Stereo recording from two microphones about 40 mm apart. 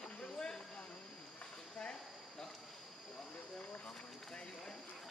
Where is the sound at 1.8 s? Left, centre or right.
Centre.